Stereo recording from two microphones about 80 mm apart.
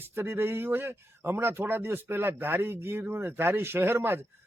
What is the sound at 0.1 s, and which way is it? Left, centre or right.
A man's voice, right.